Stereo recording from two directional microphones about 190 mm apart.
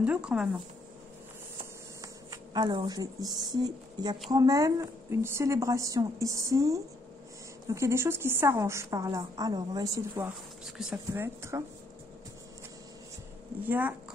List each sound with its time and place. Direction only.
0.0 s a woman's voice: 5° right (ahead or behind)
2.0 s a woman's voice: 20° right (ahead or behind)
13.7 s a woman's voice: 10° right (ahead or behind)